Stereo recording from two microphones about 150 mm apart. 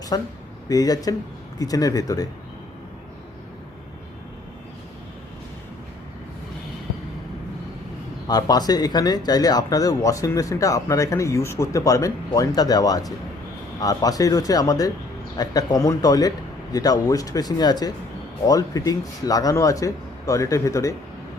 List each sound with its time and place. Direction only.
0.1 s speech: 25° left (ahead or behind)
8.3 s speech: 25° left (ahead or behind)